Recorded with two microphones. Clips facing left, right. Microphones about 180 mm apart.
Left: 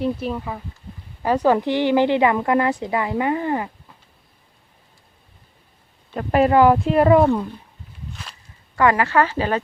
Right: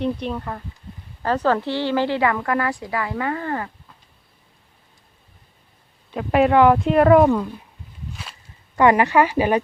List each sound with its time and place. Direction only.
0.0 s speech: 5° left (ahead or behind)
6.1 s speech: centre (ahead or behind)
8.1 s walk: 5° right (ahead or behind)
8.7 s a woman's voice: 20° right (ahead or behind)